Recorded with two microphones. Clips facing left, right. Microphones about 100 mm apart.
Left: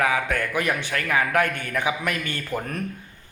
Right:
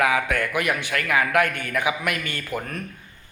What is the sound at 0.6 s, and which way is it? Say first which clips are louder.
A man's voice: even; 30° left (ahead or behind).